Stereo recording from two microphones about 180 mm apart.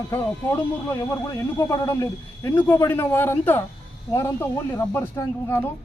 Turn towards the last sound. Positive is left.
turn(degrees=15)  # may be behind; listen again after turning